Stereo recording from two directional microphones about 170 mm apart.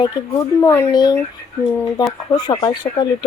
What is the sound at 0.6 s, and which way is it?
Speech, 15° left (ahead or behind).